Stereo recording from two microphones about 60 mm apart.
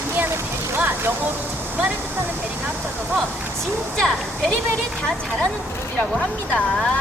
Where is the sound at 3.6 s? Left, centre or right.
Centre.